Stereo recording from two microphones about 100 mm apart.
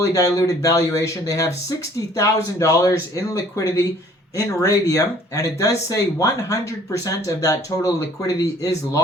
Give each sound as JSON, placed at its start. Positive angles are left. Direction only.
{"t": 0.0, "sound": "speech", "side_deg": 35}